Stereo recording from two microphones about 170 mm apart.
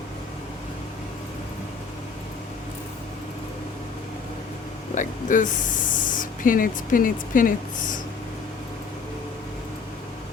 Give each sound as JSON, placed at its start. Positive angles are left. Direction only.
{"t": 4.9, "sound": "speech", "side_deg": 50}